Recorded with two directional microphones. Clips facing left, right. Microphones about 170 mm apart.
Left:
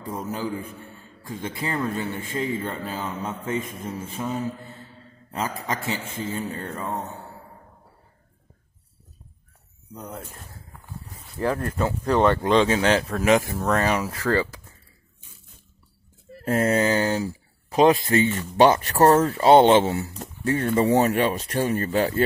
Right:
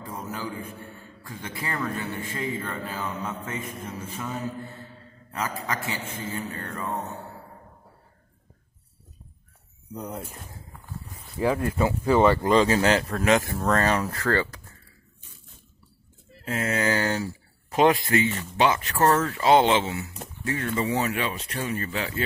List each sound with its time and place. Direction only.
0.1 s a man's voice: 30° left (ahead or behind)
5.3 s a man's voice: 25° left (ahead or behind)
9.9 s speech: 10° right (ahead or behind)
11.3 s speech: 10° right (ahead or behind)
13.2 s speech: 10° left (ahead or behind)
16.3 s a sound: 45° left (ahead or behind)
16.7 s speech: 20° left (ahead or behind)
18.6 s speech: 35° left (ahead or behind)
19.8 s speech: 45° left (ahead or behind)